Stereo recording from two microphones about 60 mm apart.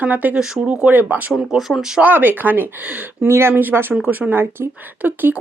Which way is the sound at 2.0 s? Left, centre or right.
Right.